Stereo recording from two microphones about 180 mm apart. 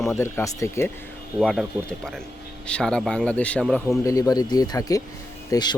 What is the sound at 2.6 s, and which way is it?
Speech, 5° left (ahead or behind).